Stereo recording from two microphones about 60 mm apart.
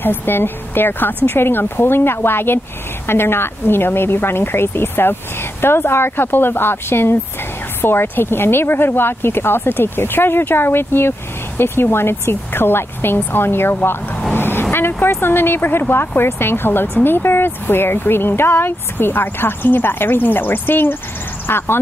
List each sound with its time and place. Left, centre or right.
0.0 s speech: left